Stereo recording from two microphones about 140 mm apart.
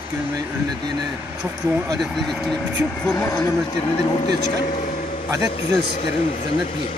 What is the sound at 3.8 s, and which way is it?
Speech, 45° left (ahead or behind).